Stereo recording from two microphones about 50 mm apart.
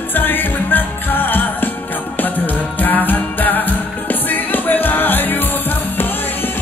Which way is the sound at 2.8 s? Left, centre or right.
Left.